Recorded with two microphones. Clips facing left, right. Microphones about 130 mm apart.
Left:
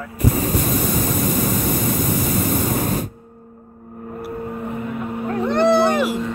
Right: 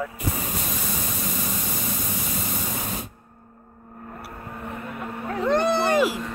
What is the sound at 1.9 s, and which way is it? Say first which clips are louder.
Spray: left 10 dB; 55° left (ahead or behind).